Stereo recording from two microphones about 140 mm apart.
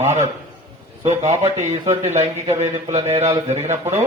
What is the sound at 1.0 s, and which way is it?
Speech, 50° right (ahead or behind).